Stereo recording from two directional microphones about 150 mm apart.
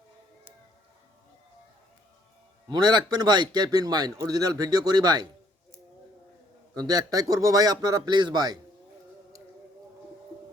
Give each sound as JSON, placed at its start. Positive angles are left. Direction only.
{"t": 2.6, "sound": "a man's voice", "side_deg": -30}
{"t": 6.7, "sound": "a man's voice", "side_deg": -25}